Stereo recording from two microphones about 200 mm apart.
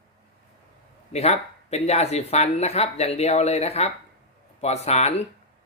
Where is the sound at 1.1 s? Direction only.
30° left (ahead or behind).